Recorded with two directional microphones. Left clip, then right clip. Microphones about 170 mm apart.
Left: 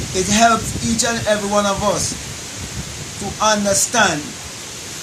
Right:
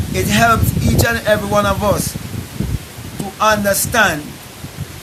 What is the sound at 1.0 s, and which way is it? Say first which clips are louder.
Speech: right 3 dB; 10° right (ahead or behind).